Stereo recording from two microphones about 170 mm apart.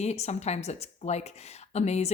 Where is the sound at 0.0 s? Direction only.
40° left (ahead or behind).